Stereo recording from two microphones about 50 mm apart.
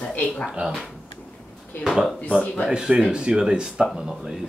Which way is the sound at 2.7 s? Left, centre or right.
Centre.